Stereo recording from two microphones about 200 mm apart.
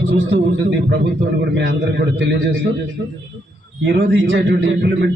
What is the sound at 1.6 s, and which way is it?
Speech, 55° right (ahead or behind).